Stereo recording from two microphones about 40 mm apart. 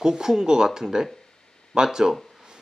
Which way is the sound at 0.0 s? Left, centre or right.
Centre.